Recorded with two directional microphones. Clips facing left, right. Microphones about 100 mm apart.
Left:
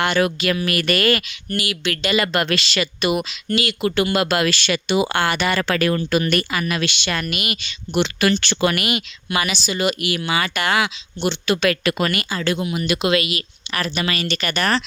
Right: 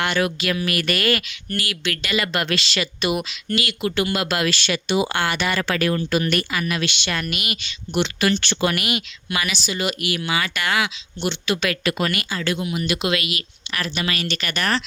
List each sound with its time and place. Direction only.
0.2 s speech: 45° left (ahead or behind)
1.5 s speech: 15° left (ahead or behind)
2.1 s speech: 45° left (ahead or behind)
3.5 s speech: 30° left (ahead or behind)
3.8 s speech: 45° left (ahead or behind); by 6.3 s 60° left (ahead or behind)
6.3 s speech: 40° left (ahead or behind)
9.3 s speech: 30° left (ahead or behind); by 12.1 s 55° left (ahead or behind)
12.3 s speech: 35° left (ahead or behind)